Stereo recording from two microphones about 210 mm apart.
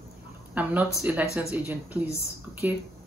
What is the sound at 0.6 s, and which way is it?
Speech, 5° right (ahead or behind).